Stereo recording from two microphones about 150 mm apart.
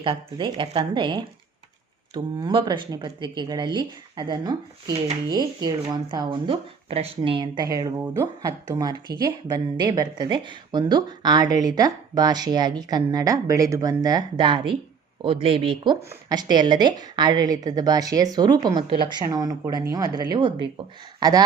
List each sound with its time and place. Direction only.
0.0 s a woman's voice: 35° right (ahead or behind)